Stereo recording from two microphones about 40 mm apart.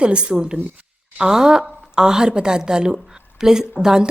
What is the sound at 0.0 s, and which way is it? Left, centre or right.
A woman's voice, right.